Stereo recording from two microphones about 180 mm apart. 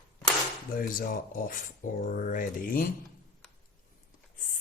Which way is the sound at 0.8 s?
50° left (ahead or behind).